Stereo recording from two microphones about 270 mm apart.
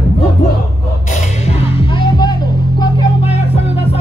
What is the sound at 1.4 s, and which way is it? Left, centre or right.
Music, centre.